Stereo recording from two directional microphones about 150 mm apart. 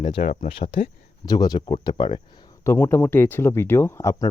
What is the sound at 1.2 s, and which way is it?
Speech, 25° left (ahead or behind).